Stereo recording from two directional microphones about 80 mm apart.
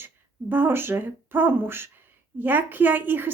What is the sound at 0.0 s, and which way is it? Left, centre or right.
A woman's voice, right.